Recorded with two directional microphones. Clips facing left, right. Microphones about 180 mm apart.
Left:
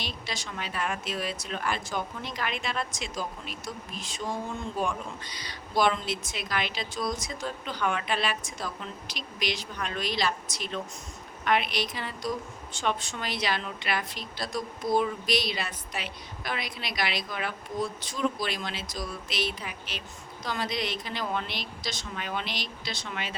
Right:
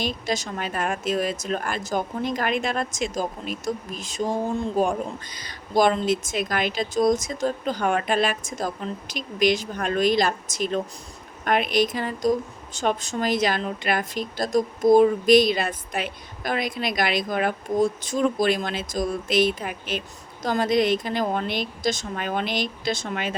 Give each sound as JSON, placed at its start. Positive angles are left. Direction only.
{"t": 0.0, "sound": "speech", "side_deg": -45}